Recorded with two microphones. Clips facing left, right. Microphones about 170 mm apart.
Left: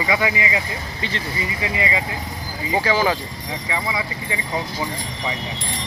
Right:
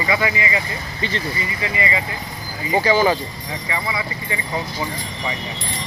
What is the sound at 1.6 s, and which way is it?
Speech, 15° left (ahead or behind).